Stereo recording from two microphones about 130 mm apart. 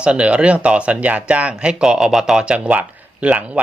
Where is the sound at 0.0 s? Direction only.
10° right (ahead or behind).